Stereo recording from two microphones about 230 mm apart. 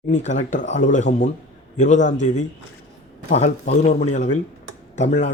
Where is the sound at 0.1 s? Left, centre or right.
Left.